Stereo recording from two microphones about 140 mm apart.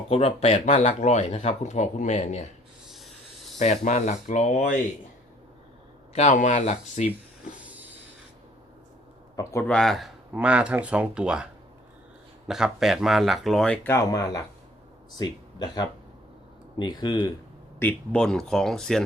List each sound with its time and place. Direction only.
0.1 s speech: 45° left (ahead or behind)
3.6 s speech: 55° left (ahead or behind)
6.1 s speech: 60° left (ahead or behind)
9.3 s speech: 20° left (ahead or behind)
9.6 s speech: 5° left (ahead or behind)
10.3 s speech: 10° right (ahead or behind)
12.5 s speech: 5° right (ahead or behind)
13.8 s speech: 20° left (ahead or behind)
17.7 s speech: 10° left (ahead or behind)